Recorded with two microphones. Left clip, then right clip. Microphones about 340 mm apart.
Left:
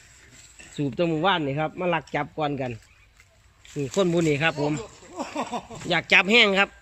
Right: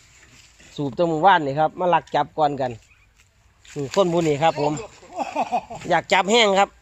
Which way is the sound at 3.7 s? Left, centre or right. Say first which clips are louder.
Right 4 dB; right.